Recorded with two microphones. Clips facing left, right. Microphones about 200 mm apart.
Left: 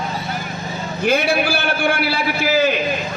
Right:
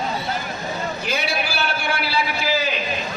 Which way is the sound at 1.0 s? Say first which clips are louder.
Left 11 dB; 50° left (ahead or behind).